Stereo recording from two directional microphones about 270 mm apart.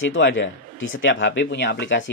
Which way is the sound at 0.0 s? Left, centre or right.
Left.